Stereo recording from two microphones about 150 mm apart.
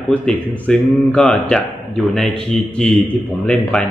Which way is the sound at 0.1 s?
5° left (ahead or behind).